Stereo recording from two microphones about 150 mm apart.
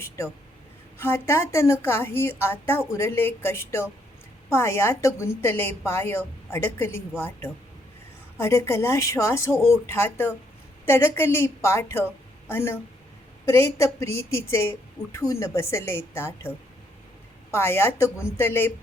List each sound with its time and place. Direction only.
0.9 s a woman's voice: 15° left (ahead or behind)